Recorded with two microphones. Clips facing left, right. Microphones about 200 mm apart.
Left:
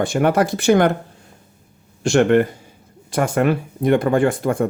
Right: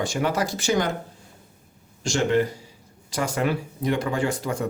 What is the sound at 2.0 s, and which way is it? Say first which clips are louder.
Speech: left 7 dB; 60° left (ahead or behind).